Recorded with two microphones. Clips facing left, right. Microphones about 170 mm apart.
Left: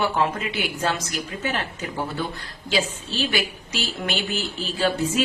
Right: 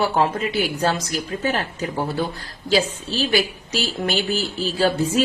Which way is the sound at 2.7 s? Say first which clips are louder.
Right 5 dB; 35° right (ahead or behind).